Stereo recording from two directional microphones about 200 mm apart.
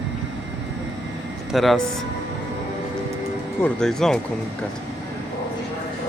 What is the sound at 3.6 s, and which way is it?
Speech, 5° left (ahead or behind).